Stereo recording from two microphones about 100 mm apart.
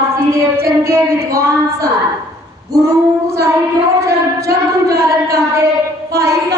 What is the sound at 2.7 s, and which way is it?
Child singing, 30° right (ahead or behind).